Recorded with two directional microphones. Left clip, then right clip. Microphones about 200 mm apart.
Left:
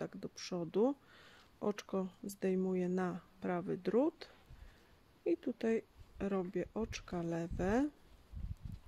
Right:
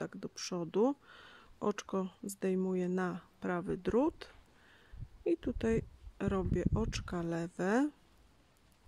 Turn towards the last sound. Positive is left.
turn(degrees=-20)  # may be behind; listen again after turning